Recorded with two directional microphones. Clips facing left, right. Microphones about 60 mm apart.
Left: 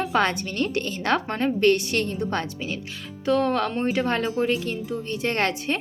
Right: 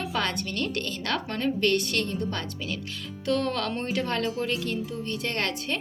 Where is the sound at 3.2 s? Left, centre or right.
Centre.